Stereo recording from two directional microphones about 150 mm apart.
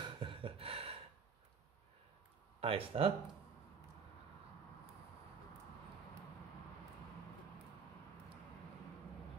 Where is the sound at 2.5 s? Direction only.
40° right (ahead or behind).